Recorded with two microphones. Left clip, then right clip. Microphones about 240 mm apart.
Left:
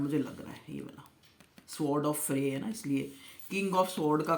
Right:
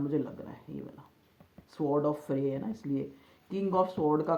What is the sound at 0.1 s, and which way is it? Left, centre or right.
Speech, left.